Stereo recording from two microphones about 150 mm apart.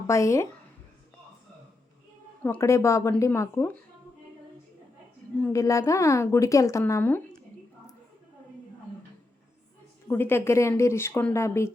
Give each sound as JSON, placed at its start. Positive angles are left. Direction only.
{"t": 0.1, "sound": "a woman's voice", "side_deg": 20}
{"t": 2.4, "sound": "a woman's voice", "side_deg": 15}
{"t": 5.4, "sound": "a woman's voice", "side_deg": 20}
{"t": 10.1, "sound": "speech", "side_deg": 15}